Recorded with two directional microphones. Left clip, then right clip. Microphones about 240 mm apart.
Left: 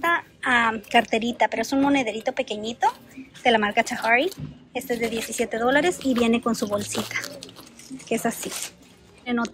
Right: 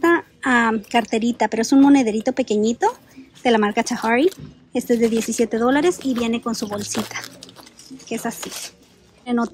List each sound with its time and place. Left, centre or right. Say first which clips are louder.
0.0 s speech: right 5 dB; centre